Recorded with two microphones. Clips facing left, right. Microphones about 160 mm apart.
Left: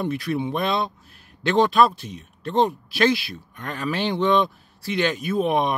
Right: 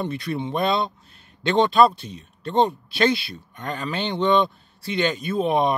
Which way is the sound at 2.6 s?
5° left (ahead or behind).